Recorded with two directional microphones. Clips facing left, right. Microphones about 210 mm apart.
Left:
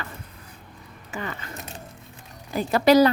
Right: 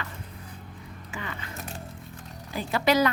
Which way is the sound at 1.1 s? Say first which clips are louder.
Left 5 dB; 40° left (ahead or behind).